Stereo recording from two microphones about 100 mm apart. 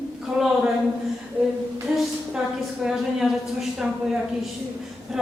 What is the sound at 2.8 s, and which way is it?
Speech, 5° right (ahead or behind).